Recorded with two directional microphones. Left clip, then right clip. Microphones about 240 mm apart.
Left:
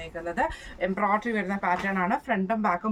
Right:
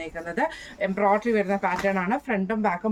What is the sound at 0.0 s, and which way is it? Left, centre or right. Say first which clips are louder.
Speech: right 1 dB; centre.